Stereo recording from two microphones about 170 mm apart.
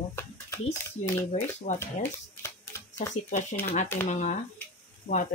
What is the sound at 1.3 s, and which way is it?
Speech, 45° left (ahead or behind).